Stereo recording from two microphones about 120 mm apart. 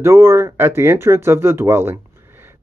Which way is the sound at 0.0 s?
20° right (ahead or behind).